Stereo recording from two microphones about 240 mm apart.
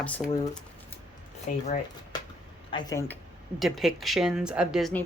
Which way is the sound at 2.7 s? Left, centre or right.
Centre.